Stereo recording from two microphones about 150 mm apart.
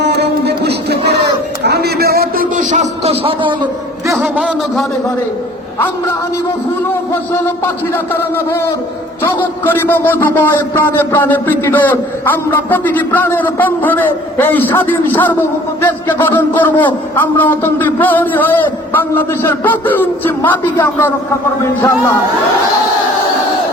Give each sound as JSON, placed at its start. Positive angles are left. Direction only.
{"t": 0.0, "sound": "a sound", "side_deg": -90}
{"t": 4.2, "sound": "a man's voice", "side_deg": -5}
{"t": 7.1, "sound": "a man's voice", "side_deg": 15}